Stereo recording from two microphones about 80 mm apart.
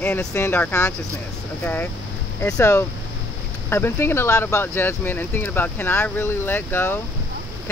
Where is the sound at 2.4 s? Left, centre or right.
Left.